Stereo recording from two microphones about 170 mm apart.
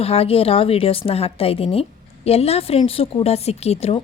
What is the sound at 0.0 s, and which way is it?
A woman's voice, 35° left (ahead or behind).